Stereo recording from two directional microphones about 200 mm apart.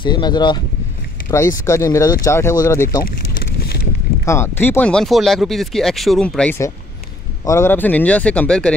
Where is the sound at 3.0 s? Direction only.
50° left (ahead or behind).